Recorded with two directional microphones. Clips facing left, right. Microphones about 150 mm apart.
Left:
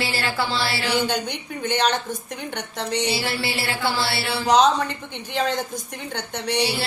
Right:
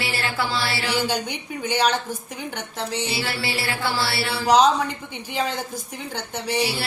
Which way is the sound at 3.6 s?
25° left (ahead or behind).